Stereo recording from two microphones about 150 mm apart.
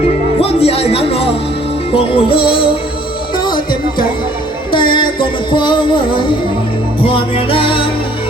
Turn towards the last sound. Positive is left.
turn(degrees=35)  # may be behind; listen again after turning